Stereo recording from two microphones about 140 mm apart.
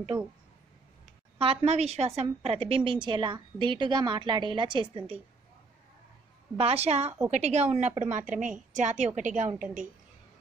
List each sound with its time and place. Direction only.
0.1 s speech: 10° right (ahead or behind)
1.4 s a woman's voice: 45° right (ahead or behind)
6.5 s a woman's voice: 45° right (ahead or behind); by 9.8 s 60° right (ahead or behind)